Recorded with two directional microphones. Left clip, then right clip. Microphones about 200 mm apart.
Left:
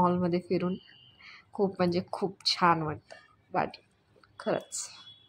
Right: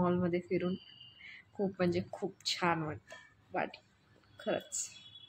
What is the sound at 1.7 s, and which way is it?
A man's voice, 15° left (ahead or behind).